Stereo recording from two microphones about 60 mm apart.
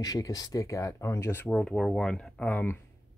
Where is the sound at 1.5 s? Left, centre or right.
Centre.